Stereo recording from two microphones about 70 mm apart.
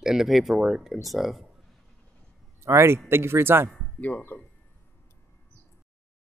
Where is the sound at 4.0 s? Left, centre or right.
Left.